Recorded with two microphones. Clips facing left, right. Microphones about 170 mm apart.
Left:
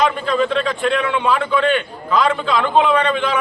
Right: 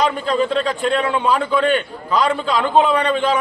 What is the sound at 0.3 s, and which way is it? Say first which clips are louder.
A man's voice: even; 35° right (ahead or behind).